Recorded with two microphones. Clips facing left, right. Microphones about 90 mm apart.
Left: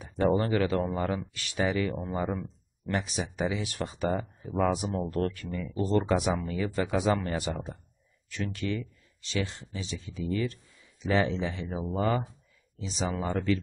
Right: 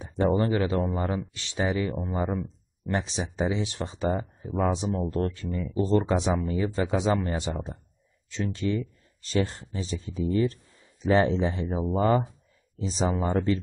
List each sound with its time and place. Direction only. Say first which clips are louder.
0.0 s a sound: right 1 dB; 30° right (ahead or behind)
0.4 s speech: right 2 dB; 25° right (ahead or behind)
9.2 s speech: right 5 dB; 40° right (ahead or behind)
12.8 s speech: right 5 dB; 35° right (ahead or behind)
13.1 s speech: right 4 dB; 20° right (ahead or behind)